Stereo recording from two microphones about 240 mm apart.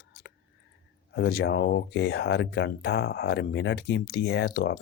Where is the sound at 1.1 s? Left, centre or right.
Left.